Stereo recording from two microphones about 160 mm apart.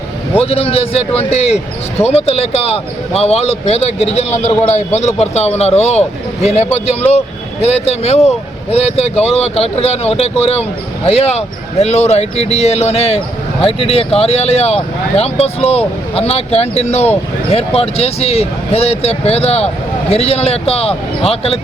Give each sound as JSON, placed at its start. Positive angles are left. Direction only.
{"t": 0.3, "sound": "speech", "side_deg": 40}